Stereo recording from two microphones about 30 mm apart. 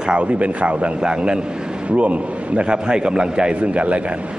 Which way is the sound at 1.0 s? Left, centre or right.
Right.